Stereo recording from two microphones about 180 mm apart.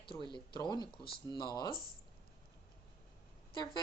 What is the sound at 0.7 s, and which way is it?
Speech, 25° left (ahead or behind).